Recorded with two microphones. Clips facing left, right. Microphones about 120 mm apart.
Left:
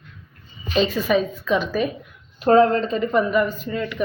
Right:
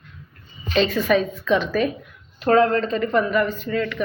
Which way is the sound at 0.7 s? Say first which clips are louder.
Right 1 dB; 5° left (ahead or behind).